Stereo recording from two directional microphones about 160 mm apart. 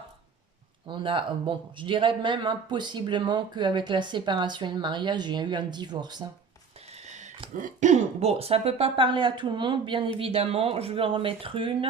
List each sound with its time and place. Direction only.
0.9 s speech: 30° right (ahead or behind)
7.5 s speech: 50° right (ahead or behind); by 11.9 s 35° right (ahead or behind)